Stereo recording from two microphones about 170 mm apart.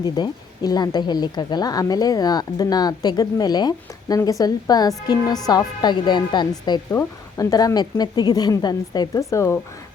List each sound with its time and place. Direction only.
0.0 s speech: 25° left (ahead or behind)